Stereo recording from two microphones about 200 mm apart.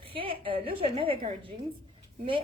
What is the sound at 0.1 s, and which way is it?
A woman's voice, 25° right (ahead or behind).